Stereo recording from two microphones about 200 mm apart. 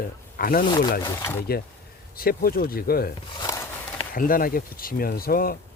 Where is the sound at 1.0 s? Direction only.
15° left (ahead or behind).